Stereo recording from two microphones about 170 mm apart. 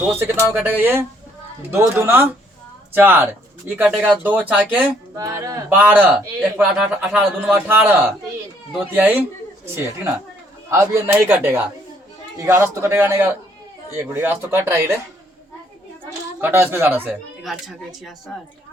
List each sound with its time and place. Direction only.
0.1 s a man's voice: 10° right (ahead or behind)
3.8 s a man's voice: centre (ahead or behind)
16.0 s a man's voice: 15° right (ahead or behind)
17.4 s speech: centre (ahead or behind)